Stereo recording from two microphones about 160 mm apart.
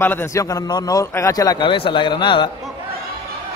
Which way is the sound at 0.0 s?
15° left (ahead or behind).